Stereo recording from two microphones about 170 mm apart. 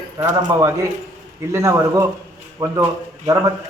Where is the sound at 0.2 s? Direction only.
20° right (ahead or behind).